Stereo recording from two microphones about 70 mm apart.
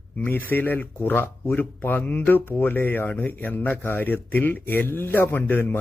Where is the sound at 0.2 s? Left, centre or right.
Left.